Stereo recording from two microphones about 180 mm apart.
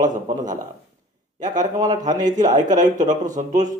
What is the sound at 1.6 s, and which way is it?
Speech, 20° right (ahead or behind).